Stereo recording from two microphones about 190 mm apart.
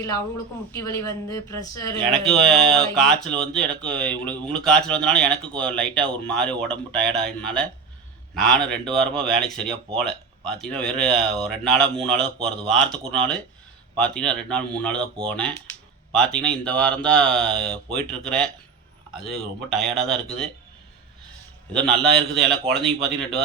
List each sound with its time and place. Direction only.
0.7 s speech: 15° left (ahead or behind)
2.0 s speech: centre (ahead or behind)
21.7 s speech: 5° left (ahead or behind)